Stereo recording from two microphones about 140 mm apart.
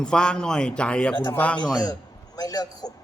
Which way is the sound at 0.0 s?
5° left (ahead or behind).